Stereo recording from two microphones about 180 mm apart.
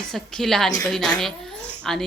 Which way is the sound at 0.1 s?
Centre (ahead or behind).